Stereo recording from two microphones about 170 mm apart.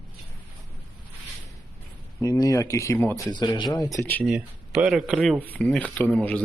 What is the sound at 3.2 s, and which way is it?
Speech, 25° left (ahead or behind).